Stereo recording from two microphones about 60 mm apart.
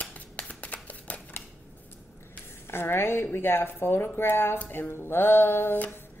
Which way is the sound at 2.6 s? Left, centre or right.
Left.